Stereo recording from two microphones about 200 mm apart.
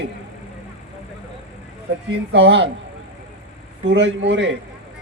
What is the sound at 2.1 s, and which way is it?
Speech, 65° right (ahead or behind).